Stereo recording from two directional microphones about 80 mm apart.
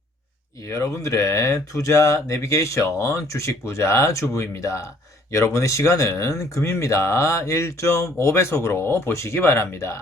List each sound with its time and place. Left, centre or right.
0.7 s speech: left